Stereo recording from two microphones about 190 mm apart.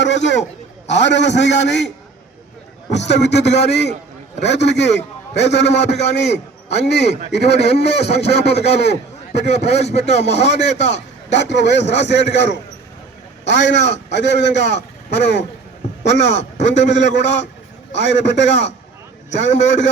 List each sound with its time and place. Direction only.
0.0 s a man's voice: 70° left (ahead or behind)
2.9 s a man's voice: 65° left (ahead or behind)
7.9 s speech: 35° left (ahead or behind)
8.8 s a man's voice: 60° left (ahead or behind)
9.5 s speech: 35° left (ahead or behind)
10.9 s a man's voice: 65° left (ahead or behind)
16.3 s a man's voice: 35° left (ahead or behind)
16.9 s a man's voice: 65° left (ahead or behind)